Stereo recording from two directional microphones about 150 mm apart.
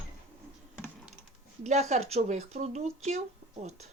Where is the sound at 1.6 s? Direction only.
50° right (ahead or behind).